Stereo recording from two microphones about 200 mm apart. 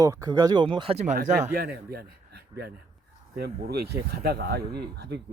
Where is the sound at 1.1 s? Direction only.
45° right (ahead or behind).